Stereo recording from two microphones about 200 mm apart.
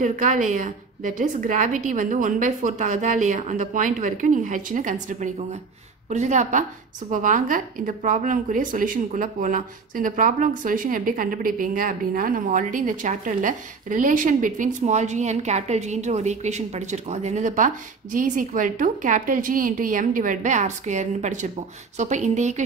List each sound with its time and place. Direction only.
0.0 s a woman's voice: 40° right (ahead or behind)